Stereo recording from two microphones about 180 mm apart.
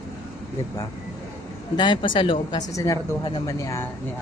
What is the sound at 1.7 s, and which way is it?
Speech, 25° left (ahead or behind).